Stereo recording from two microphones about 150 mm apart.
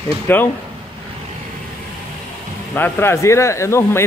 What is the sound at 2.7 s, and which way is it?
Speech, 15° left (ahead or behind).